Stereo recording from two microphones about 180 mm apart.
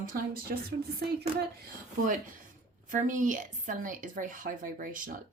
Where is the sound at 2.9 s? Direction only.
45° right (ahead or behind).